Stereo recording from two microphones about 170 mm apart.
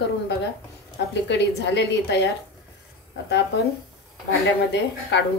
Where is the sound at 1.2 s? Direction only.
90° left.